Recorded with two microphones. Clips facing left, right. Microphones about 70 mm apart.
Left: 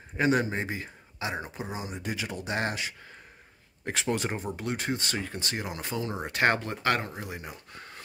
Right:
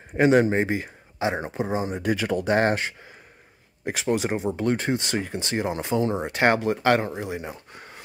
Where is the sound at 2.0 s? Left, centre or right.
Right.